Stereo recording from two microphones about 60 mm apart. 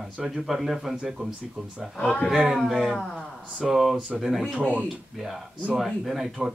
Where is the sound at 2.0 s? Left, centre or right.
Left.